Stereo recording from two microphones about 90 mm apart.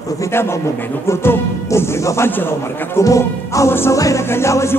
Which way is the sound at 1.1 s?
30° left (ahead or behind).